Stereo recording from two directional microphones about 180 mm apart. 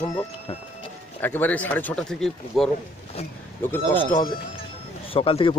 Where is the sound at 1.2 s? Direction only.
10° left (ahead or behind).